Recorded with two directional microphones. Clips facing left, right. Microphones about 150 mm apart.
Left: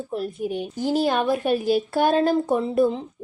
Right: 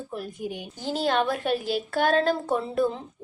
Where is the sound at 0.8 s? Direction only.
15° left (ahead or behind).